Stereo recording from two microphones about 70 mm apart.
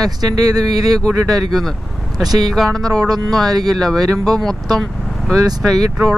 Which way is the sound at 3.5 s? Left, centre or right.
Right.